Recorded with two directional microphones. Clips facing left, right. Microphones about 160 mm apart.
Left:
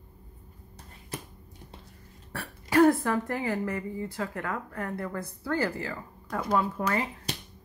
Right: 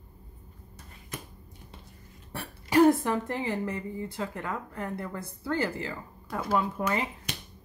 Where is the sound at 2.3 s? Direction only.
20° right (ahead or behind).